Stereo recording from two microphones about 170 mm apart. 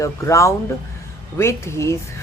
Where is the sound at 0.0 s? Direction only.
15° left (ahead or behind).